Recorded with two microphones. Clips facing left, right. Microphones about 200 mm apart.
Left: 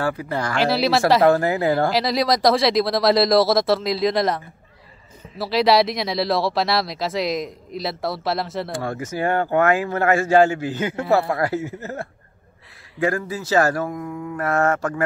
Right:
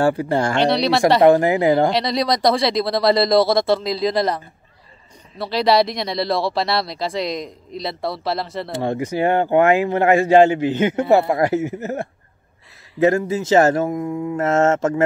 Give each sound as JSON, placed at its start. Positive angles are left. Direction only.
{"t": 0.0, "sound": "speech", "side_deg": -30}
{"t": 0.6, "sound": "speech", "side_deg": 5}
{"t": 1.2, "sound": "speech", "side_deg": -15}
{"t": 1.9, "sound": "speech", "side_deg": 0}
{"t": 5.4, "sound": "speech", "side_deg": 0}
{"t": 8.7, "sound": "speech", "side_deg": -20}